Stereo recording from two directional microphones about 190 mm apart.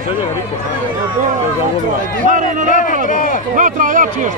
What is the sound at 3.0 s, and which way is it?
Speech, 45° left (ahead or behind).